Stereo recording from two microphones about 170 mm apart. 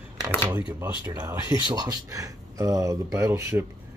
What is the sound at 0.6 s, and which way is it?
Speech, 10° right (ahead or behind).